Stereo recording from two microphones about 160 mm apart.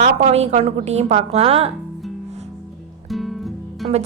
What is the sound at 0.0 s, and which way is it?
A woman's voice, 45° right (ahead or behind).